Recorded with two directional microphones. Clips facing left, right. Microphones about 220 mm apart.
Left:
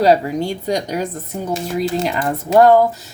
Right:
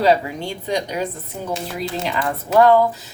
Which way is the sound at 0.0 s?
40° left (ahead or behind).